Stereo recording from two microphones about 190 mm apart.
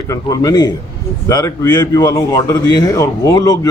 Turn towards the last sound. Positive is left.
turn(degrees=20)  # may be behind; listen again after turning